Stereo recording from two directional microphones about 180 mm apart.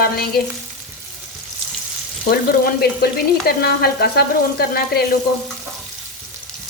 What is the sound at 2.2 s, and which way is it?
Frying, 55° left (ahead or behind).